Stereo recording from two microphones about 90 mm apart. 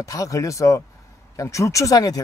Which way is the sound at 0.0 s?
40° left (ahead or behind).